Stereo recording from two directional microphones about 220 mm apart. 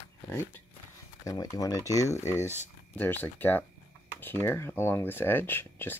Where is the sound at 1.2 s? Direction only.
15° left (ahead or behind).